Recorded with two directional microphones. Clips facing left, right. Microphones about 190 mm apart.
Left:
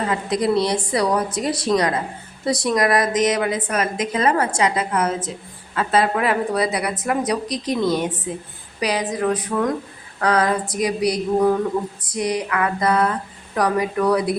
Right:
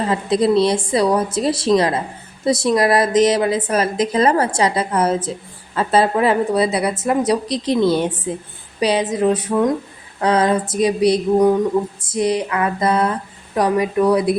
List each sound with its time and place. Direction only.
0.0 s a woman's voice: 30° right (ahead or behind)